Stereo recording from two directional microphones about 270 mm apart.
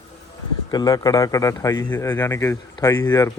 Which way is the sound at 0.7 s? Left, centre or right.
Centre.